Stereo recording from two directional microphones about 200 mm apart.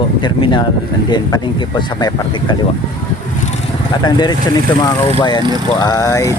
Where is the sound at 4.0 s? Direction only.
20° left (ahead or behind).